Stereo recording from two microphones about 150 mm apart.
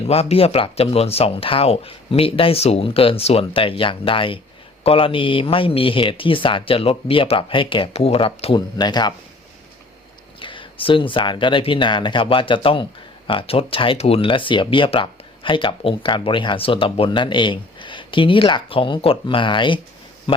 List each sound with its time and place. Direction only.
0.1 s speech: 40° left (ahead or behind)
8.8 s speech: 30° left (ahead or behind)
10.4 s speech: 35° left (ahead or behind)